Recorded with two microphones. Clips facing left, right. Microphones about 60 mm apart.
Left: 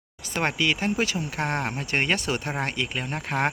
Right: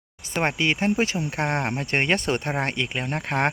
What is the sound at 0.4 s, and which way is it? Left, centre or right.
Speech, right.